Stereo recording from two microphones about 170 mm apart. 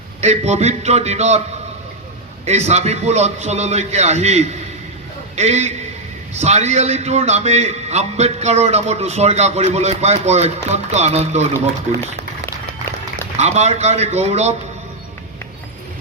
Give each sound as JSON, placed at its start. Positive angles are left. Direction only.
{"t": 0.2, "sound": "a man's voice", "side_deg": -40}
{"t": 2.5, "sound": "a man's voice", "side_deg": -40}
{"t": 13.3, "sound": "a man's voice", "side_deg": -40}